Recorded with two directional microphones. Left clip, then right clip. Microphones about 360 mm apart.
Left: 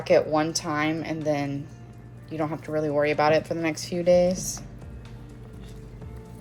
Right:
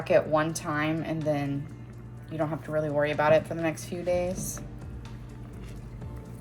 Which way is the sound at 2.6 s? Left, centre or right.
Centre.